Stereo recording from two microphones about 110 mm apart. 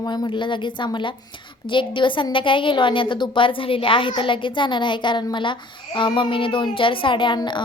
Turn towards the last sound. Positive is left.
turn(degrees=45)  # may be behind; listen again after turning